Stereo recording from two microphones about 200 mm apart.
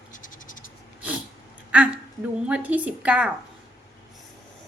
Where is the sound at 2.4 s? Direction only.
5° right (ahead or behind).